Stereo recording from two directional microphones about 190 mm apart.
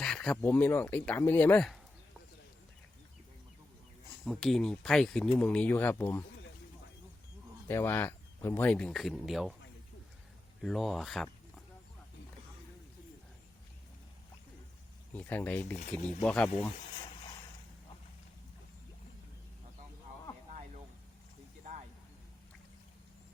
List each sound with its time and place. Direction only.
0.0 s speech: 5° left (ahead or behind)
4.3 s speech: centre (ahead or behind)
7.7 s speech: 10° left (ahead or behind)
10.6 s speech: centre (ahead or behind)
15.1 s speech: 10° left (ahead or behind)
21.6 s vehicle: 40° right (ahead or behind)